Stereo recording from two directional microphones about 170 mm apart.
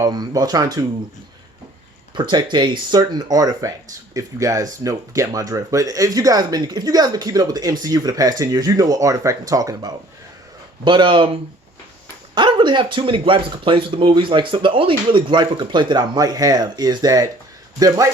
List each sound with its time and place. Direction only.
0.0 s speech: 25° right (ahead or behind)
2.1 s speech: 25° right (ahead or behind)
12.3 s speech: 30° right (ahead or behind)